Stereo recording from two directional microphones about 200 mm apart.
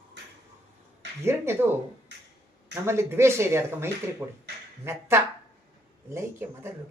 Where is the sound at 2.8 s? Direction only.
15° right (ahead or behind).